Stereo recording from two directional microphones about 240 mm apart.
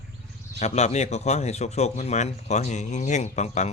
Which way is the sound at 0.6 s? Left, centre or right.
Left.